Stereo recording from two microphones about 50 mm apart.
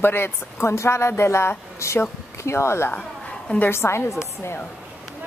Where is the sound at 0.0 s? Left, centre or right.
Left.